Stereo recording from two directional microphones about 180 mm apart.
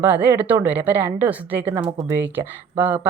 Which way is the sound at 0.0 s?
10° right (ahead or behind).